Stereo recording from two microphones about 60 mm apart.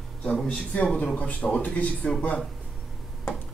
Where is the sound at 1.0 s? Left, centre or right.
Left.